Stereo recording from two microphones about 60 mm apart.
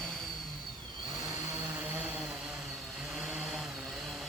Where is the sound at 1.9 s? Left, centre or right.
Right.